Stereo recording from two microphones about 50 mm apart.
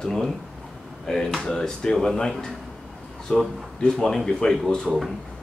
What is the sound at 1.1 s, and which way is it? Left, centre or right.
Speech, centre.